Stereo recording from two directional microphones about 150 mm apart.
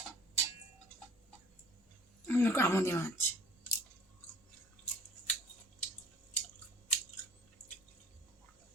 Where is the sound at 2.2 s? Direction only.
15° left (ahead or behind).